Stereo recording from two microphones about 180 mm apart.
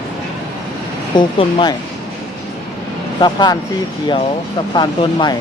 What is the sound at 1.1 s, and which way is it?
Speech, 25° left (ahead or behind).